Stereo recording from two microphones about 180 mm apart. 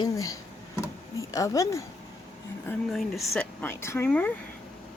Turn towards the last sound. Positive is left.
turn(degrees=10)  # may be behind; listen again after turning